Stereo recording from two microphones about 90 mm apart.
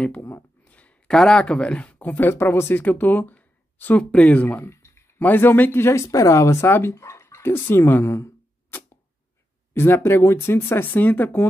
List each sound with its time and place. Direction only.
0.0 s speech: 20° left (ahead or behind)
4.6 s a sound: 30° left (ahead or behind)
5.2 s speech: 25° left (ahead or behind)